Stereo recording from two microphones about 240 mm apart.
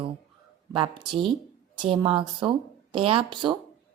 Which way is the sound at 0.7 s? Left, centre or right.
Centre.